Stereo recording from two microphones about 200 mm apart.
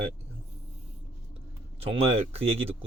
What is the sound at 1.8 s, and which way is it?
Speech, 30° right (ahead or behind).